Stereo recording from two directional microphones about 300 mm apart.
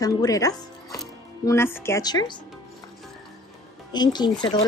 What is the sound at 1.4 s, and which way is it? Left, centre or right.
Music, centre.